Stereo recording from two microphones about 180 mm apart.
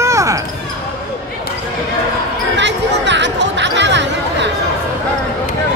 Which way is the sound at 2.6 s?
80° right.